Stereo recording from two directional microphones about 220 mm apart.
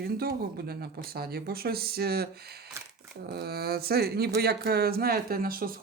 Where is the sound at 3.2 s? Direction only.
45° right (ahead or behind).